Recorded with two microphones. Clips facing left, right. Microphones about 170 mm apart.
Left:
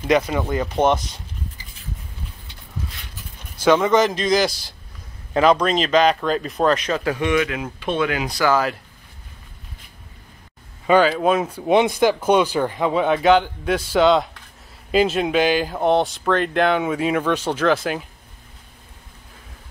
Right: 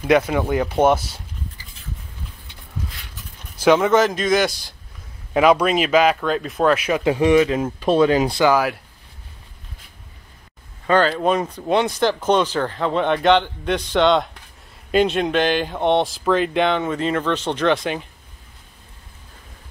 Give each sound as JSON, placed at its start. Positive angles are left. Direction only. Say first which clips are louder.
{"t": 0.0, "sound": "speech", "louder": "right 2 dB", "side_deg": -5}
{"t": 3.6, "sound": "speech", "louder": "right 1 dB", "side_deg": -5}
{"t": 7.0, "sound": "speech", "louder": "right 5 dB", "side_deg": -30}
{"t": 8.5, "sound": "speech", "louder": "left 1 dB", "side_deg": -10}
{"t": 10.9, "sound": "a man's voice", "louder": "left 1 dB", "side_deg": 5}